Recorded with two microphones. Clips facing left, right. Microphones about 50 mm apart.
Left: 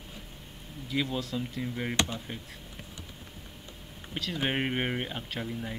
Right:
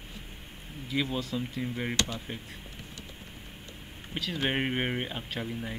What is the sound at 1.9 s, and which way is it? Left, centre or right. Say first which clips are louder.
Speech: left 4 dB; left.